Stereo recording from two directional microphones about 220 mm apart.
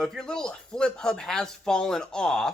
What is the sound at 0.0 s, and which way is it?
Speech, centre (ahead or behind).